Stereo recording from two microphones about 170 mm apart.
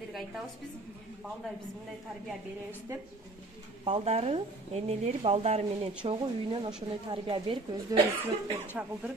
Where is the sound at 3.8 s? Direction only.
35° right (ahead or behind).